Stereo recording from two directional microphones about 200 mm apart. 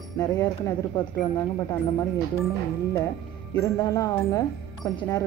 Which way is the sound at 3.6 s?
20° left (ahead or behind).